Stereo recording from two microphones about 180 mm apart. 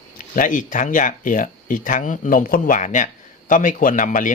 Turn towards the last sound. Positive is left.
turn(degrees=45)  # may be behind; listen again after turning